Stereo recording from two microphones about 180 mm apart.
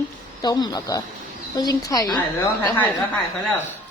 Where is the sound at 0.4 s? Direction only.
20° left (ahead or behind).